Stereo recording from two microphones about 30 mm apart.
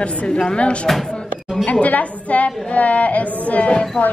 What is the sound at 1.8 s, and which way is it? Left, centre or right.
A woman's voice, left.